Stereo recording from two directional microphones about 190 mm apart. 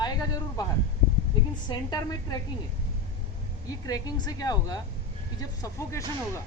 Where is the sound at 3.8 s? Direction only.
20° left (ahead or behind).